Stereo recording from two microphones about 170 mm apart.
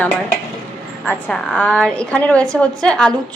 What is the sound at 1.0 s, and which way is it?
A woman's voice, 5° left (ahead or behind).